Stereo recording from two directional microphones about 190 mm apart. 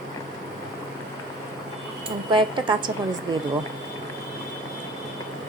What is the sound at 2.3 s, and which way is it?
Speech, 25° right (ahead or behind).